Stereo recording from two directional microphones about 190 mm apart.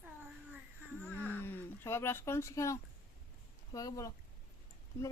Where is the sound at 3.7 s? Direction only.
15° left (ahead or behind).